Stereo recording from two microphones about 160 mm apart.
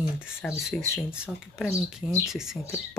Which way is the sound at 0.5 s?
Centre (ahead or behind).